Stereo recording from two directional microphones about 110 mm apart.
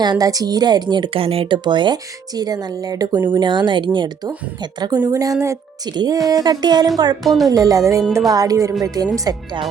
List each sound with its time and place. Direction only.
0.0 s speech: 35° right (ahead or behind); by 1.5 s 60° right (ahead or behind)
1.5 s speech: 45° right (ahead or behind)
5.9 s speech: 40° right (ahead or behind)
7.3 s speech: centre (ahead or behind)
7.5 s speech: 30° right (ahead or behind)